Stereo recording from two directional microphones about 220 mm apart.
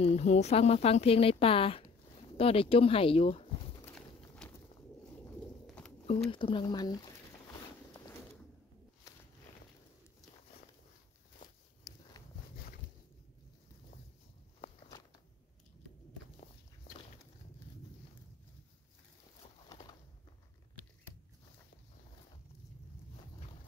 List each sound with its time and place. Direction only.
0.0 s speech: 30° left (ahead or behind)
4.4 s bird: 5° left (ahead or behind)
5.8 s a sound: 5° left (ahead or behind)
6.3 s speech: 20° left (ahead or behind)